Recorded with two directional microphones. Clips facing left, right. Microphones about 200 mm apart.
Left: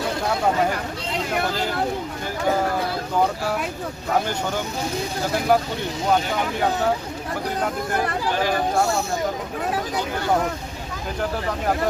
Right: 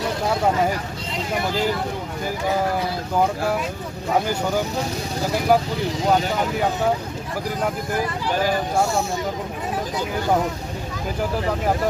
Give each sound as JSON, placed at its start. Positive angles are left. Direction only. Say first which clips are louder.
{"t": 5.5, "sound": "speech", "louder": "right 1 dB", "side_deg": -5}